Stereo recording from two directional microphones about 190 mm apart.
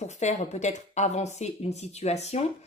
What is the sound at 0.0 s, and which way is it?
Speech, 35° left (ahead or behind).